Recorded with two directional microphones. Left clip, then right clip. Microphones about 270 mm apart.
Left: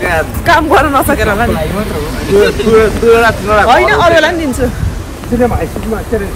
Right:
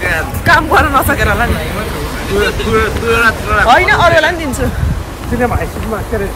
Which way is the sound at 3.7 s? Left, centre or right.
Centre.